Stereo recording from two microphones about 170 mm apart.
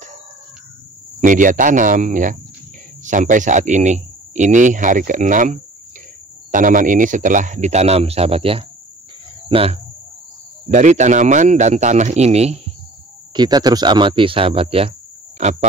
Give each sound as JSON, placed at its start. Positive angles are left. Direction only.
{"t": 1.2, "sound": "speech", "side_deg": -50}
{"t": 10.7, "sound": "speech", "side_deg": -45}
{"t": 13.3, "sound": "speech", "side_deg": -25}